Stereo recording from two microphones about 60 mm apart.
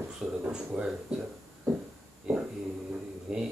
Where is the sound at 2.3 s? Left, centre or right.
Centre.